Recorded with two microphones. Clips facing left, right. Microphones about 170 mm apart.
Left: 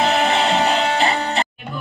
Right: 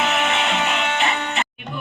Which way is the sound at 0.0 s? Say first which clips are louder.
Left 4 dB; 35° left (ahead or behind).